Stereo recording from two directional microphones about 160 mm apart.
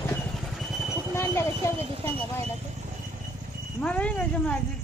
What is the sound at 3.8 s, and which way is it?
Speech, 5° left (ahead or behind).